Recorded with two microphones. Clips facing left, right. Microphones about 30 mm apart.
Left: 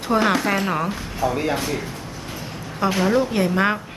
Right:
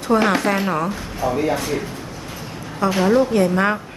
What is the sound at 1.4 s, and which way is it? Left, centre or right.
Speech, centre.